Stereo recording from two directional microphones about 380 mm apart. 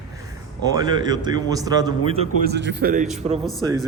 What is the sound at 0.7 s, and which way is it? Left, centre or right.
A man's voice, centre.